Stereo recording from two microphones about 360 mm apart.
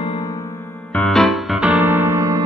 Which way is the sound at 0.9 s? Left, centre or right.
Centre.